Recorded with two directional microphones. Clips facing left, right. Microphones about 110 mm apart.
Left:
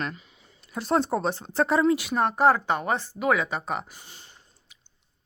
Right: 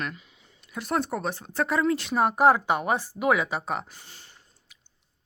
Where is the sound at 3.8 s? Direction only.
15° left (ahead or behind).